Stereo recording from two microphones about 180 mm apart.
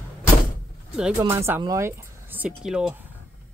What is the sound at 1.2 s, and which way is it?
Speech, 15° right (ahead or behind).